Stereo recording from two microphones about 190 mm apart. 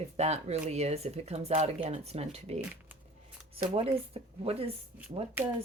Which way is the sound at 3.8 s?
30° right (ahead or behind).